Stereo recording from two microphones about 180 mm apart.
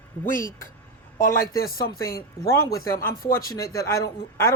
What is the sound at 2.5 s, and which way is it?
Speech, 15° left (ahead or behind).